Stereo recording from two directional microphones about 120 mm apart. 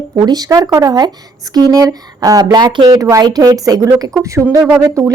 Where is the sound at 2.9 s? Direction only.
25° right (ahead or behind).